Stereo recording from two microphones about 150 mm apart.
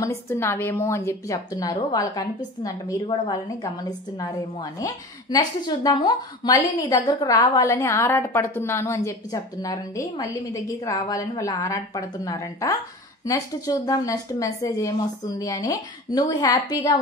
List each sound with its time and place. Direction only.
0.0 s a woman's voice: 20° left (ahead or behind)
4.7 s a woman's voice: 25° left (ahead or behind)